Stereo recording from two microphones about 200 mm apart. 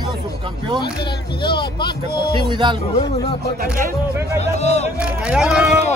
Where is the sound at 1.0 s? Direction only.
25° left (ahead or behind).